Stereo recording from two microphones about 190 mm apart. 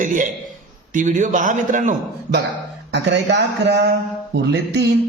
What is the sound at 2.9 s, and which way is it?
A man's voice, 65° right (ahead or behind).